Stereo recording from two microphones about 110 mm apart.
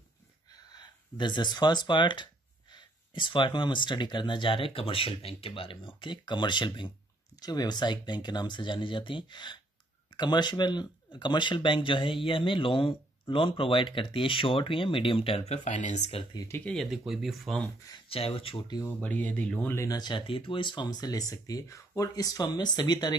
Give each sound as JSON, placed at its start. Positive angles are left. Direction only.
{"t": 0.7, "sound": "speech", "side_deg": 40}
{"t": 16.6, "sound": "speech", "side_deg": 0}
{"t": 18.1, "sound": "speech", "side_deg": 60}
{"t": 18.9, "sound": "speech", "side_deg": 10}
{"t": 19.7, "sound": "speech", "side_deg": 25}
{"t": 20.0, "sound": "speech", "side_deg": 45}